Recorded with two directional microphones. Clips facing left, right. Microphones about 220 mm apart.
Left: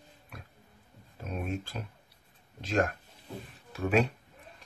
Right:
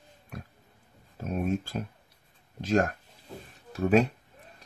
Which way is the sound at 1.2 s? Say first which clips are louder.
Right 6 dB; 45° right (ahead or behind).